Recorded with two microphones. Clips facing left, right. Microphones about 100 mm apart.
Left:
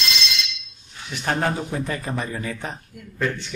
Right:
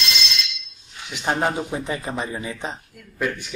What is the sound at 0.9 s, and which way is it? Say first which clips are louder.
Speech: right 1 dB; 15° right (ahead or behind).